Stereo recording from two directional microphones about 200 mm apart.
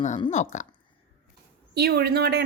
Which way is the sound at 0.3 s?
35° left (ahead or behind).